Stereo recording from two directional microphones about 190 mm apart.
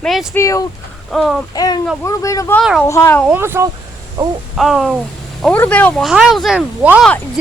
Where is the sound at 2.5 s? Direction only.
Centre (ahead or behind).